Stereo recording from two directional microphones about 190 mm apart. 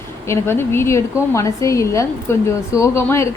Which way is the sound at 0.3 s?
15° left (ahead or behind).